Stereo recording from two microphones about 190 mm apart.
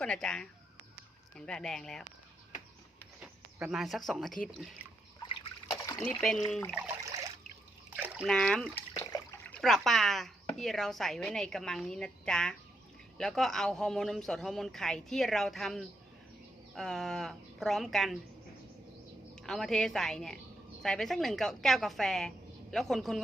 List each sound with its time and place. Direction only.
0.0 s speech: 5° left (ahead or behind)
3.2 s a sound: 5° right (ahead or behind)
5.2 s trickle: 25° left (ahead or behind)
6.0 s speech: 5° left (ahead or behind)
6.7 s trickle: 10° right (ahead or behind)
7.9 s speech: 5° right (ahead or behind)
19.4 s speech: centre (ahead or behind)